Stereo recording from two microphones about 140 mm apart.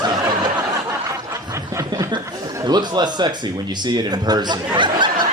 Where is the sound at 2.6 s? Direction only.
30° right (ahead or behind).